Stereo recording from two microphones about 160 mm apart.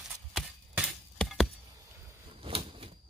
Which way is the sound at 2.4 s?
35° right (ahead or behind).